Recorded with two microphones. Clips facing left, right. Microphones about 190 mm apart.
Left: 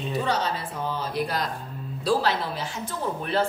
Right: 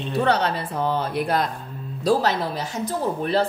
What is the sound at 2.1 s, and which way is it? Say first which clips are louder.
A woman's voice: right 3 dB; 45° right (ahead or behind).